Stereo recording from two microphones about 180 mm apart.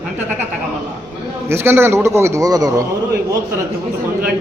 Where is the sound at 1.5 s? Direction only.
15° right (ahead or behind).